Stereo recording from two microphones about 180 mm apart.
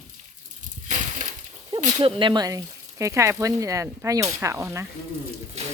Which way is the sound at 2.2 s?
25° right (ahead or behind).